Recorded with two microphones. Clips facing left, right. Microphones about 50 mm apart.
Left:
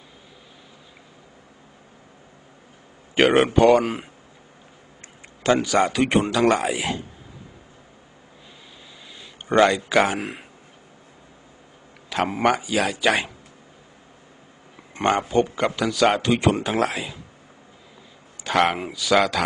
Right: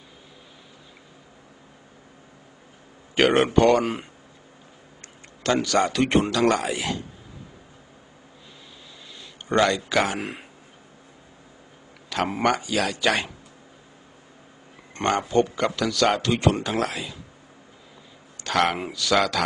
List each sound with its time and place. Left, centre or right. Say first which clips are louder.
3.2 s speech: left 2 dB; centre
3.8 s speech: left 1 dB; centre
5.4 s a man's voice: left 2 dB; centre
5.9 s speech: left 1 dB; centre
6.5 s speech: left 2 dB; centre
9.5 s speech: left 4 dB; centre
12.1 s speech: left 2 dB; centre
15.0 s speech: left 1 dB; centre
16.8 s a man's voice: left 4 dB; left
18.4 s speech: left 2 dB; centre